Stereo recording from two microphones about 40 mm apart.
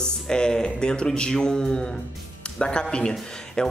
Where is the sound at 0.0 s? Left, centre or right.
Centre.